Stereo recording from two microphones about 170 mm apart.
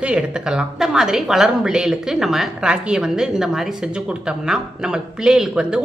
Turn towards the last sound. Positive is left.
turn(degrees=-5)  # may be behind; listen again after turning